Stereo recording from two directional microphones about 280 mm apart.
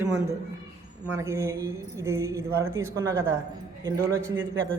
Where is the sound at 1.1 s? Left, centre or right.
Centre.